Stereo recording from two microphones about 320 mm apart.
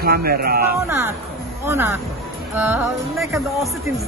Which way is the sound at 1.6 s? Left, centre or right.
Centre.